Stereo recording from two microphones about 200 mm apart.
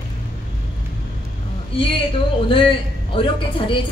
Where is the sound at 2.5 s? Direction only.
25° left (ahead or behind).